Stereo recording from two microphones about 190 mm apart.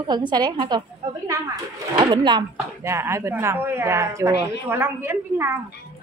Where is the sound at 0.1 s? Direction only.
20° right (ahead or behind).